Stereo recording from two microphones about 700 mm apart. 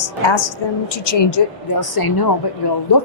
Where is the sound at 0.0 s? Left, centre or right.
Left.